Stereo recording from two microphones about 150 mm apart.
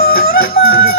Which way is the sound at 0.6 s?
90° left.